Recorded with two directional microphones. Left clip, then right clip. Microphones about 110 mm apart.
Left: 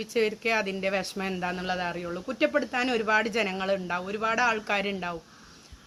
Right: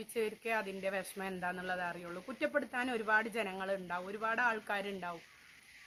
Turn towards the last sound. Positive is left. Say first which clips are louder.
# left 10 dB
turn(degrees=-15)  # may be behind; listen again after turning